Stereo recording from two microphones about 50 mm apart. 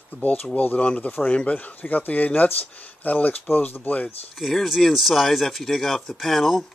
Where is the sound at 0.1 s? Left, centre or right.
Left.